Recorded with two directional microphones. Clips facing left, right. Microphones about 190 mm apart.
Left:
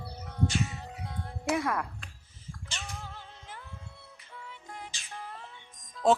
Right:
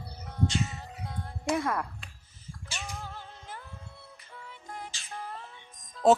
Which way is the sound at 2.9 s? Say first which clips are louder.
Right 2 dB; 40° right (ahead or behind).